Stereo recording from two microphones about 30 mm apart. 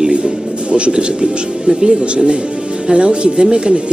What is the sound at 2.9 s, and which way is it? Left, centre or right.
Speech, right.